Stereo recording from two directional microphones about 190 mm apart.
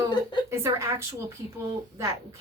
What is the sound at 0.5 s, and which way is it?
Speech, 15° right (ahead or behind).